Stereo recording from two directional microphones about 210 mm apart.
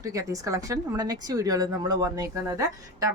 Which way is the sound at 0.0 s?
15° right (ahead or behind).